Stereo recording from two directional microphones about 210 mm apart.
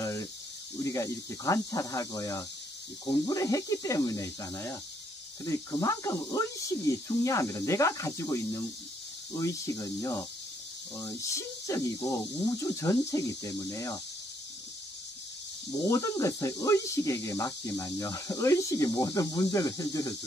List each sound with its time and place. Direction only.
0.8 s speech: 15° left (ahead or behind)
15.9 s speech: 15° left (ahead or behind)